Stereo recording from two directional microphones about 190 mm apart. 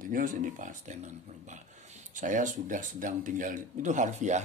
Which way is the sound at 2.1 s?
40° right (ahead or behind).